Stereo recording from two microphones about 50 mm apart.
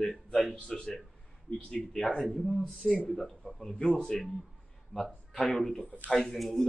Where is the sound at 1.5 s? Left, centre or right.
Centre.